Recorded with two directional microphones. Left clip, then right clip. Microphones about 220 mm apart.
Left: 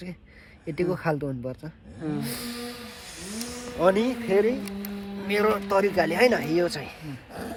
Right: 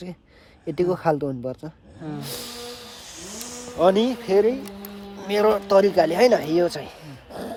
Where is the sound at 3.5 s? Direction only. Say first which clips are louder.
Right 4 dB; 50° right (ahead or behind).